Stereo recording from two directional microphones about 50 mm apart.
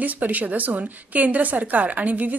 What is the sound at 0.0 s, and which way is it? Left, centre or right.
A woman's voice, right.